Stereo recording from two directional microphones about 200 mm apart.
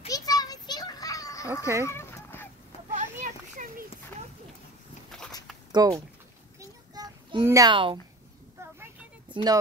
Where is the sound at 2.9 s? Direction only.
40° right (ahead or behind).